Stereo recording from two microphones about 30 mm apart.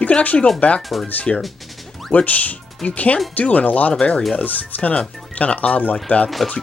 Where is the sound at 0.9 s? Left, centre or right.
Centre.